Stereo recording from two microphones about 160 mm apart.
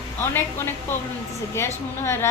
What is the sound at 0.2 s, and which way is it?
A woman's voice, 15° left (ahead or behind).